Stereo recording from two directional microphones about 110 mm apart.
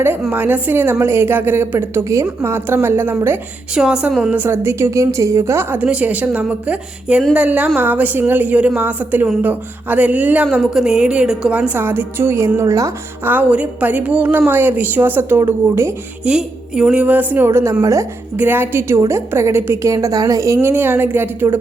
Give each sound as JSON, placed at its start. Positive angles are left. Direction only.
{"t": 0.3, "sound": "a woman's voice", "side_deg": -15}
{"t": 3.8, "sound": "speech", "side_deg": -10}
{"t": 4.4, "sound": "a woman's voice", "side_deg": -20}
{"t": 13.2, "sound": "speech", "side_deg": -15}
{"t": 16.2, "sound": "a woman's voice", "side_deg": -5}
{"t": 18.3, "sound": "a woman's voice", "side_deg": -20}